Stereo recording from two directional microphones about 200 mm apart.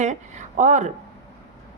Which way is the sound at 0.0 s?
35° right (ahead or behind).